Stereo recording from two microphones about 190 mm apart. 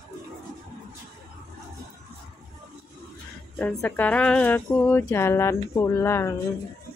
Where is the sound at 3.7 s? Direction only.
10° left (ahead or behind).